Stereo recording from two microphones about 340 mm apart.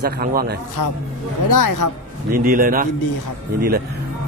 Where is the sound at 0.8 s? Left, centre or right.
Left.